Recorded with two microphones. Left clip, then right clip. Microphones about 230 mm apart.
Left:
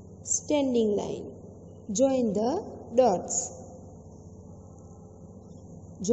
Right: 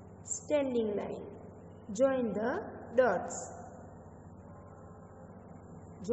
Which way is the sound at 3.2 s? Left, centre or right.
Centre.